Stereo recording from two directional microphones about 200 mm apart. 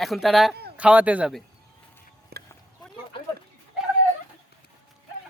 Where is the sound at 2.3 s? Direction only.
50° right (ahead or behind).